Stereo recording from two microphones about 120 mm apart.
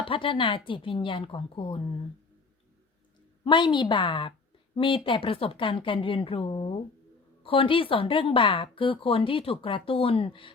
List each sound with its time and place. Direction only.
0.0 s a woman's voice: 45° left (ahead or behind)
3.4 s a woman's voice: 40° left (ahead or behind)